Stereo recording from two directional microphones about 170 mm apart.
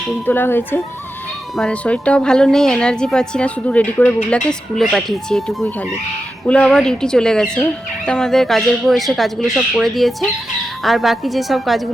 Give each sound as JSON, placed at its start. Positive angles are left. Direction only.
{"t": 0.3, "sound": "a woman's voice", "side_deg": 10}